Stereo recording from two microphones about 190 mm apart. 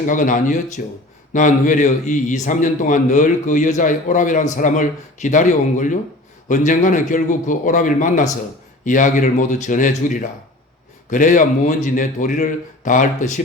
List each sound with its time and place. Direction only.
0.0 s a man's voice: 45° left (ahead or behind)